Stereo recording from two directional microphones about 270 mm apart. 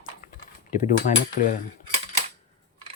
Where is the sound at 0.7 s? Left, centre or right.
Left.